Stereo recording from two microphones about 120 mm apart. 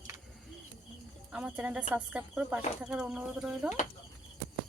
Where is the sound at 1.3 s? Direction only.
10° right (ahead or behind).